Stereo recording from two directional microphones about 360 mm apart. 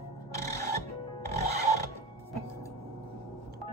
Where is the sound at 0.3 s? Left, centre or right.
Centre.